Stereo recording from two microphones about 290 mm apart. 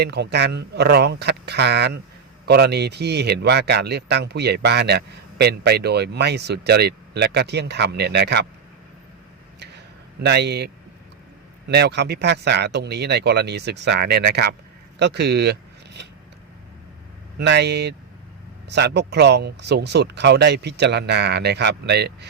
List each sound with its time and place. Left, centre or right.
0.0 s speech: right
9.6 s a sound: right
11.7 s speech: right
17.3 s speech: right